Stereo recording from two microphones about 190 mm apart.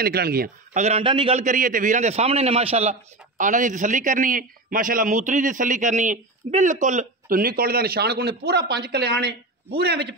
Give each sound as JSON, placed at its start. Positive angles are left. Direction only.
{"t": 0.0, "sound": "a man's voice", "side_deg": -55}
{"t": 0.7, "sound": "a man's voice", "side_deg": -35}